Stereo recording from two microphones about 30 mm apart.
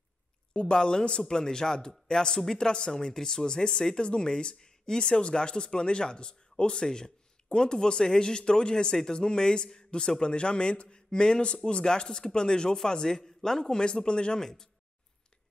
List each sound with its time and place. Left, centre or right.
0.7 s speech: left
13.6 s speech: left
14.4 s speech: centre